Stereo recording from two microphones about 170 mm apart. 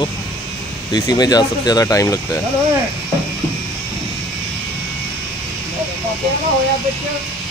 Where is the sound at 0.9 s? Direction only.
25° left (ahead or behind).